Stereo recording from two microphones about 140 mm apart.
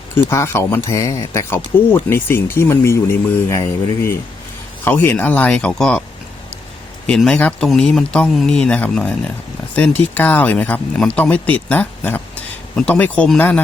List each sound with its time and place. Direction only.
0.3 s speech: 20° left (ahead or behind)
7.1 s speech: 5° left (ahead or behind)